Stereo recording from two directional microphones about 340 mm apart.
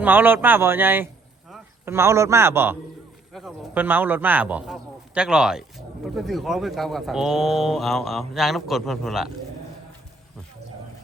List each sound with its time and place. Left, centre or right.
0.0 s a man's voice: centre